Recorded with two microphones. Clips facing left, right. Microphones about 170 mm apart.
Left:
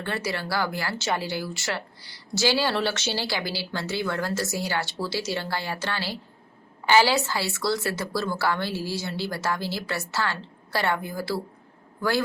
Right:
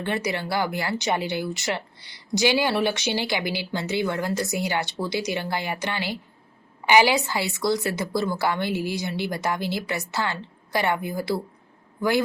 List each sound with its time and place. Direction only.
0.0 s speech: 20° right (ahead or behind)